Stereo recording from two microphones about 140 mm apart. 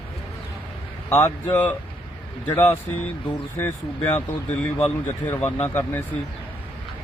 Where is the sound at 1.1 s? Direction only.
15° left (ahead or behind).